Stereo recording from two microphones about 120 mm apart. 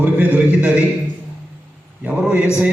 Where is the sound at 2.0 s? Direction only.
10° right (ahead or behind).